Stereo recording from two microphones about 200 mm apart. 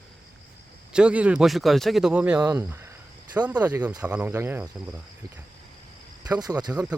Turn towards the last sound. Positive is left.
turn(degrees=-20)  # may be behind; listen again after turning